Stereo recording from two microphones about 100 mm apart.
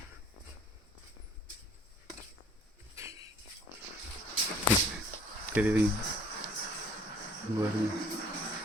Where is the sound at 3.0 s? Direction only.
30° right (ahead or behind).